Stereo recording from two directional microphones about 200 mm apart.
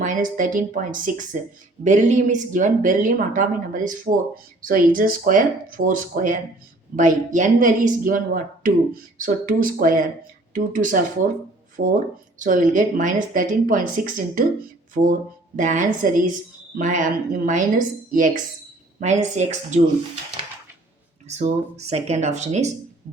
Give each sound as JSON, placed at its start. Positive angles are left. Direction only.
{"t": 0.0, "sound": "speech", "side_deg": -40}
{"t": 11.8, "sound": "speech", "side_deg": -60}
{"t": 12.4, "sound": "speech", "side_deg": -40}
{"t": 15.5, "sound": "speech", "side_deg": -40}
{"t": 21.2, "sound": "speech", "side_deg": -35}